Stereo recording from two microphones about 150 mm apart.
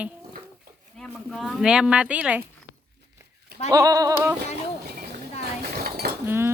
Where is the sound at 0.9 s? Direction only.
5° left (ahead or behind).